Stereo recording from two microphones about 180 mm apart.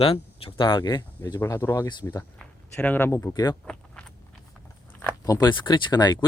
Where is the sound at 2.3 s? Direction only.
5° left (ahead or behind).